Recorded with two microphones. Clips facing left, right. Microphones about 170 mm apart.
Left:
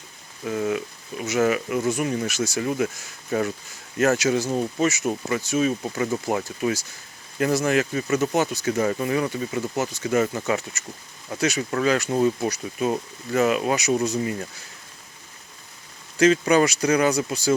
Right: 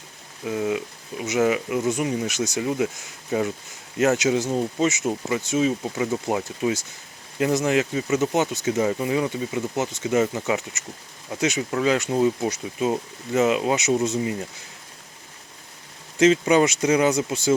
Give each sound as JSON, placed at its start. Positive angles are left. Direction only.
{"t": 0.4, "sound": "speech", "side_deg": -15}
{"t": 16.1, "sound": "speech", "side_deg": -20}